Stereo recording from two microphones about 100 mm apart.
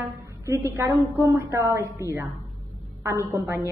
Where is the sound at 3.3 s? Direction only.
30° right (ahead or behind).